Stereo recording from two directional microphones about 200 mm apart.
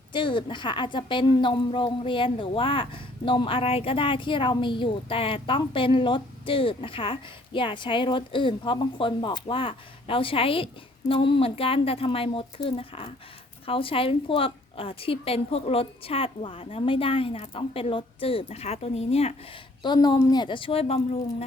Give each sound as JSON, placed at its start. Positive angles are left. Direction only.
{"t": 0.1, "sound": "a woman's voice", "side_deg": 25}